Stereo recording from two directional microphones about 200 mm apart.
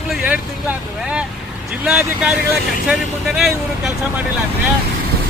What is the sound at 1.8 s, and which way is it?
Speech, 5° right (ahead or behind).